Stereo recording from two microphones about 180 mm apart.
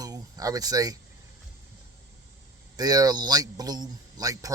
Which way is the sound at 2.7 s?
20° right (ahead or behind).